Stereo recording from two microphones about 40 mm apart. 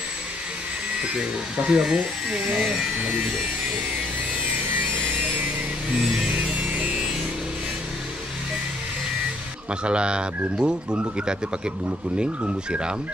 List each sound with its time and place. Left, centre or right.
1.7 s speech: right
5.9 s music: centre
9.7 s speech: right